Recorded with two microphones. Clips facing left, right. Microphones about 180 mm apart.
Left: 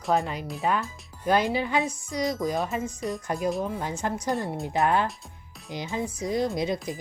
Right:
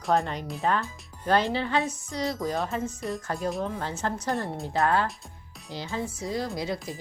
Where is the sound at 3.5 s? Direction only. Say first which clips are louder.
Left 1 dB; 5° left (ahead or behind).